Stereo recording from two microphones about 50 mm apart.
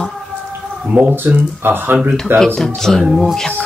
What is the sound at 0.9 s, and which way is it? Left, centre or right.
Speech, right.